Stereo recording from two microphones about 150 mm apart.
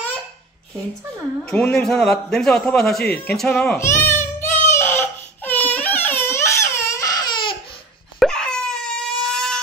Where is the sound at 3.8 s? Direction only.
15° left (ahead or behind).